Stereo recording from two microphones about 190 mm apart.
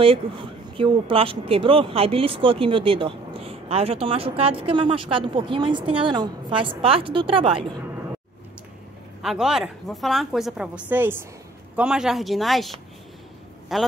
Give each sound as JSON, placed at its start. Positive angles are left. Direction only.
{"t": 0.0, "sound": "speech", "side_deg": -30}
{"t": 9.2, "sound": "a woman's voice", "side_deg": -5}